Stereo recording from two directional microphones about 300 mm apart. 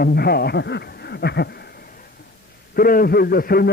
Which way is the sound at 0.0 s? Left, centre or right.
Left.